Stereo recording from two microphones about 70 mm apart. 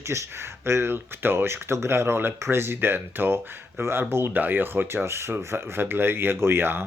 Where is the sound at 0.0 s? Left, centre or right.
Right.